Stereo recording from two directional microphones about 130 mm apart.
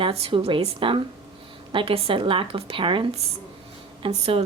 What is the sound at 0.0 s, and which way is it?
A woman's voice, 45° right (ahead or behind).